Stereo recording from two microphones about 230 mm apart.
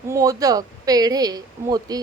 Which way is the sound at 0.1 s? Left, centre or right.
Centre.